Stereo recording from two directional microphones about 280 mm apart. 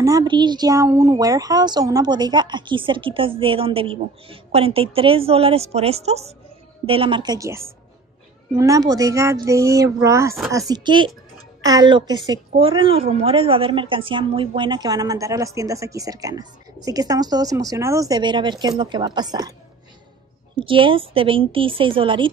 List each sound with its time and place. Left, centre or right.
0.0 s a woman's voice: centre
20.5 s a woman's voice: centre